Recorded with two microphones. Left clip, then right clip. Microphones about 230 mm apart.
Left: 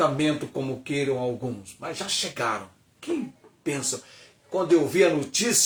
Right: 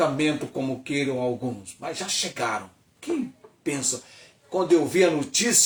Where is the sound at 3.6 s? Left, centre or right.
Centre.